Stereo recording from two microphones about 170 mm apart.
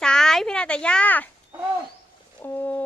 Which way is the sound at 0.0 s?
5° left (ahead or behind).